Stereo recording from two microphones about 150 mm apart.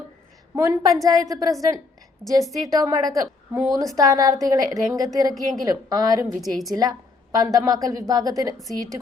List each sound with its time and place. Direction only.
0.5 s a woman's voice: 20° right (ahead or behind)
6.2 s a woman's voice: centre (ahead or behind)
7.3 s a woman's voice: 25° right (ahead or behind)